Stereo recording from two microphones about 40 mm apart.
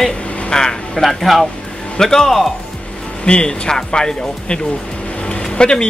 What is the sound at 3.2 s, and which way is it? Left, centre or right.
Speech, left.